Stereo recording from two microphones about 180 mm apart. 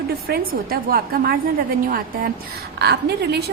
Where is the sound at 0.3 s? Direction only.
55° right (ahead or behind).